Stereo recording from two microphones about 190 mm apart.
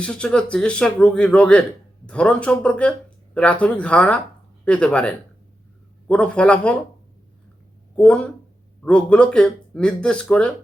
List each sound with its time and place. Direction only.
0.0 s speech: 5° left (ahead or behind)
7.9 s speech: 5° left (ahead or behind)